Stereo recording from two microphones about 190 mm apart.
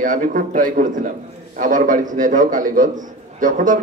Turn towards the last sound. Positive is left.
turn(degrees=-45)  # may be behind; listen again after turning